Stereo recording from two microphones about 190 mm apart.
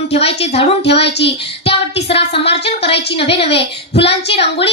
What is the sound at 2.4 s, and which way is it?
Speech, 65° left (ahead or behind).